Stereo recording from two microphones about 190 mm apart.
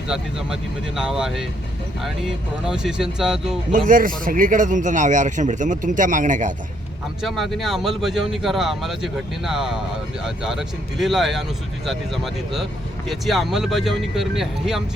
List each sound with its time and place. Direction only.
0.1 s speech: 5° right (ahead or behind)
2.6 s speech: 5° right (ahead or behind)
3.8 s a man's voice: 45° right (ahead or behind)
7.2 s speech: centre (ahead or behind)